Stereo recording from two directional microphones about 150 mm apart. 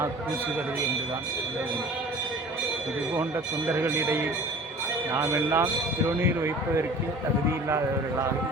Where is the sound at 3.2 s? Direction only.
15° right (ahead or behind).